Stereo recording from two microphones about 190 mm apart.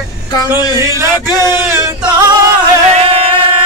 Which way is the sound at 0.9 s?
15° right (ahead or behind).